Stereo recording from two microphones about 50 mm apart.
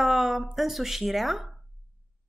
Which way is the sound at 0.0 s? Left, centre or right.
Centre.